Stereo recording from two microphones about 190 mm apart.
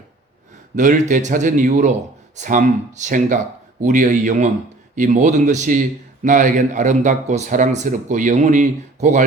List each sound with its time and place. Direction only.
0.8 s speech: 40° right (ahead or behind)